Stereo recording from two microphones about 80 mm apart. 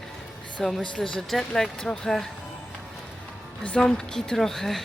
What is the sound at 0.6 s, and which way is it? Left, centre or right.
Speech, centre.